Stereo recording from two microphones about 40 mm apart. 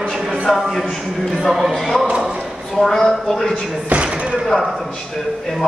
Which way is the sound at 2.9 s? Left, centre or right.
Centre.